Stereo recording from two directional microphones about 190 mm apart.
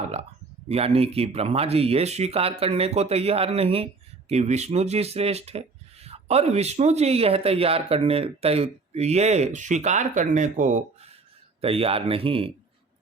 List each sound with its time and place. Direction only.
0.7 s speech: 30° right (ahead or behind)
11.6 s speech: 30° right (ahead or behind)